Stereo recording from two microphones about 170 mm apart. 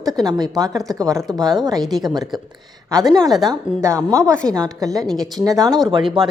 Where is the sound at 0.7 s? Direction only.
Centre (ahead or behind).